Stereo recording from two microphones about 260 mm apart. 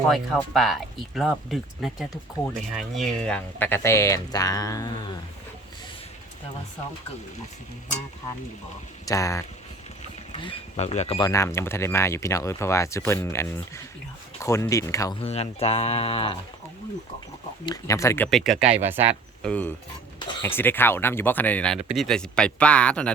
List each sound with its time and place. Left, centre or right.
0.1 s speech: centre
9.0 s speech: centre
11.3 s speech: centre
15.2 s speech: left
17.7 s speech: centre
19.5 s speech: centre